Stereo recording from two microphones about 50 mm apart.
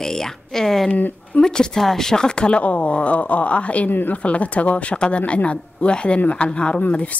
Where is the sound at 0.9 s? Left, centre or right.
Left.